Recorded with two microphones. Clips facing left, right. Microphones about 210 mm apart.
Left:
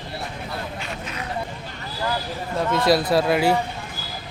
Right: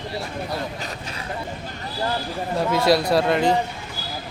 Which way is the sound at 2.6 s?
Centre (ahead or behind).